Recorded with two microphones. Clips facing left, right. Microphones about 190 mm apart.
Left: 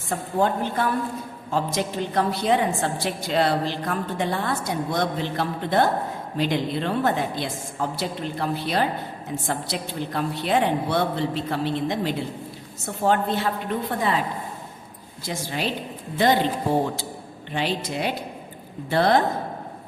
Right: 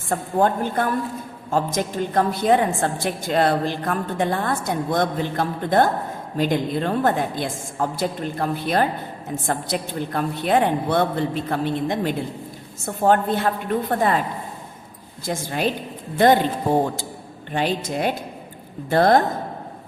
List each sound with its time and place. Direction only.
0.1 s a woman's voice: 50° right (ahead or behind)
15.3 s a woman's voice: 50° right (ahead or behind)
17.5 s a woman's voice: 45° right (ahead or behind)